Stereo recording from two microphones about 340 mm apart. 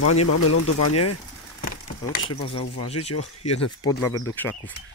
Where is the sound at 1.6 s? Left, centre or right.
Left.